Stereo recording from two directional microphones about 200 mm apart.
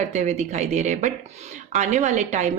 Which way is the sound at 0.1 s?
35° right (ahead or behind).